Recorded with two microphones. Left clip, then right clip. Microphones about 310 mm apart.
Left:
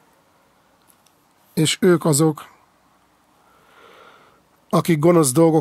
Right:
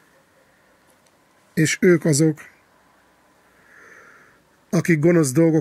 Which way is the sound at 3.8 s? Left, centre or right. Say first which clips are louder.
Even; left.